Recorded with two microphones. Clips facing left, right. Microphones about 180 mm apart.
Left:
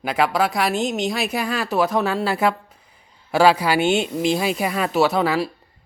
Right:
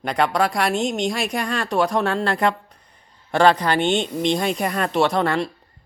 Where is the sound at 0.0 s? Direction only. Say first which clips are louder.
Even; 5° left (ahead or behind).